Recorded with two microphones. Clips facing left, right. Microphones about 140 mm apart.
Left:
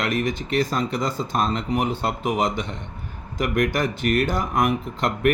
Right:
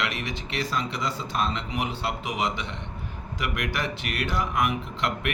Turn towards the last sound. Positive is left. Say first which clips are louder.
# left 7 dB
turn(degrees=45)  # may be behind; listen again after turning